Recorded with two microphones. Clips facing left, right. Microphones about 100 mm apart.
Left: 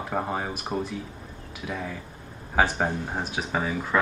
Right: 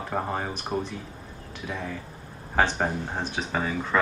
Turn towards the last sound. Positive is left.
turn(degrees=5)  # may be behind; listen again after turning